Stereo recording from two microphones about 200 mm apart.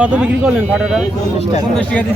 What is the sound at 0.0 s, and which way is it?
Speech, 5° right (ahead or behind).